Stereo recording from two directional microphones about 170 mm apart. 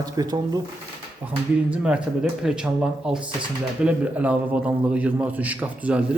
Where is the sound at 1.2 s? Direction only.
5° right (ahead or behind).